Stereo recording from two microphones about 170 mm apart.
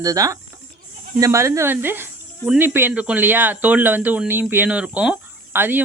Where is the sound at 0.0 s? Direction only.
20° right (ahead or behind).